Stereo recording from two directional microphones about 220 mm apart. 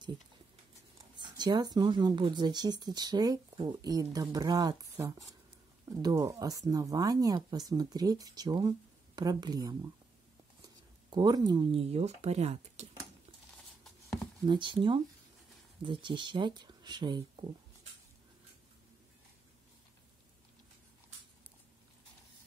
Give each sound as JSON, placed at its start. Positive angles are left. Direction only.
{"t": 1.1, "sound": "speech", "side_deg": -20}
{"t": 14.4, "sound": "speech", "side_deg": -20}